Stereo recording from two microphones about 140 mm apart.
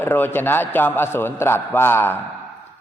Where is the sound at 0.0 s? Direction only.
15° left (ahead or behind).